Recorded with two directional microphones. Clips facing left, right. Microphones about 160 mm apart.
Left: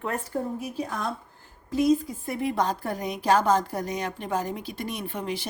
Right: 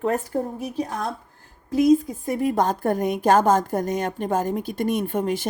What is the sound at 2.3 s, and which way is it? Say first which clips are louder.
A woman's voice: right 5 dB; 45° right (ahead or behind).